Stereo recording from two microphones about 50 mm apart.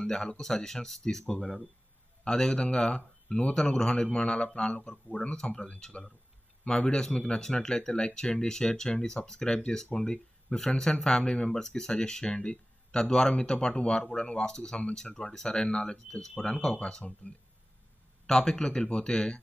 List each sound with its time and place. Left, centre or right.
0.0 s speech: centre
3.5 s speech: centre
18.2 s speech: centre